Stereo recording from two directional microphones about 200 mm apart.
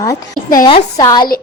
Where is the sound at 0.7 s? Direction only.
25° left (ahead or behind).